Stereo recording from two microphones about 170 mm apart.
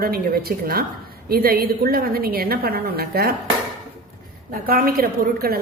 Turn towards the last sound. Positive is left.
turn(degrees=-60)  # may be behind; listen again after turning